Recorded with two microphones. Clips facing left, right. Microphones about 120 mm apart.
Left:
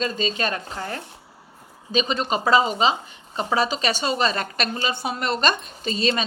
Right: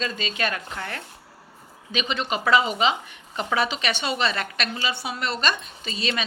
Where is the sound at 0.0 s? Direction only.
40° left (ahead or behind).